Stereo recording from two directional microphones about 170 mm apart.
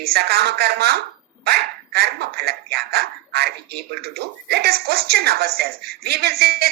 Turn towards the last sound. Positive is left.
turn(degrees=-70)  # may be behind; listen again after turning